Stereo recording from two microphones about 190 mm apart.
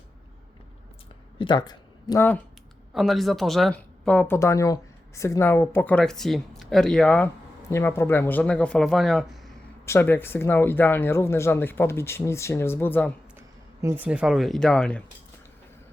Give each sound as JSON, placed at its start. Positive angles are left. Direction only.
{"t": 1.4, "sound": "speech", "side_deg": 25}
{"t": 2.9, "sound": "speech", "side_deg": 0}
{"t": 9.8, "sound": "speech", "side_deg": 10}
{"t": 13.8, "sound": "speech", "side_deg": -10}